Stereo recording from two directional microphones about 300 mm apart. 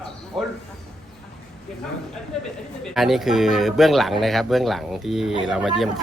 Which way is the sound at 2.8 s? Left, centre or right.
Centre.